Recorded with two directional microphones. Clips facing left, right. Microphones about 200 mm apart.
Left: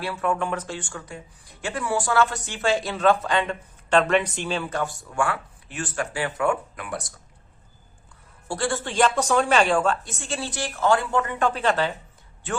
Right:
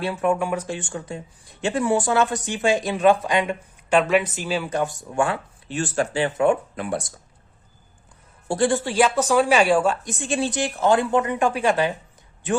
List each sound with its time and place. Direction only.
0.0 s speech: 20° right (ahead or behind)
0.8 s speech: 25° right (ahead or behind)
4.8 s speech: 20° right (ahead or behind)
8.4 s speech: 20° right (ahead or behind)